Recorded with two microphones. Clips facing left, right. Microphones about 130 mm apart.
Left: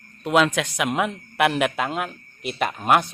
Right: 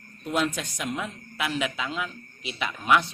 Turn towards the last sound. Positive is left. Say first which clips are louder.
# left 4 dB
turn(degrees=50)  # may be behind; listen again after turning